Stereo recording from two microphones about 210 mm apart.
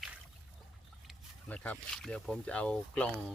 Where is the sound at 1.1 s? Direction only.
5° left (ahead or behind).